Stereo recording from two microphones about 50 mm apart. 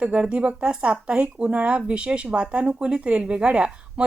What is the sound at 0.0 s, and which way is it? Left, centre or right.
A woman's voice, right.